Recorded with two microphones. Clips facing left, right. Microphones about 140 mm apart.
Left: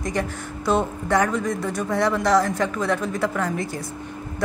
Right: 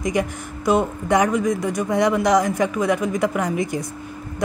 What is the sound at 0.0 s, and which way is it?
A woman's voice, 15° right (ahead or behind).